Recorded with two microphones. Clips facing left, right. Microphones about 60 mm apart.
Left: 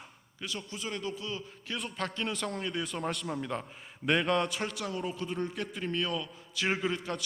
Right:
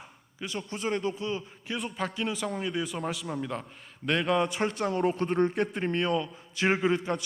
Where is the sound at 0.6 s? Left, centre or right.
Right.